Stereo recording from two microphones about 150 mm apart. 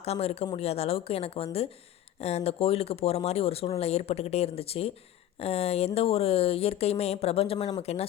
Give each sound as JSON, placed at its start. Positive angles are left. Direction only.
{"t": 0.0, "sound": "speech", "side_deg": 45}